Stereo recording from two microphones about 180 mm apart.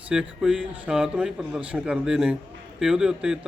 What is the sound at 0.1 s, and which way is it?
A man's voice, 5° right (ahead or behind).